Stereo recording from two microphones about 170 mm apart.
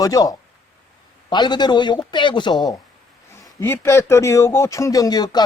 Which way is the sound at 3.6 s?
15° left (ahead or behind).